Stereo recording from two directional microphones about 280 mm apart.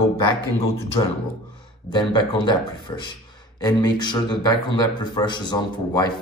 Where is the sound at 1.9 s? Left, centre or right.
Centre.